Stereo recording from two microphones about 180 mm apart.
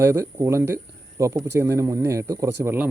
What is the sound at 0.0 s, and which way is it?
Speech, 15° right (ahead or behind).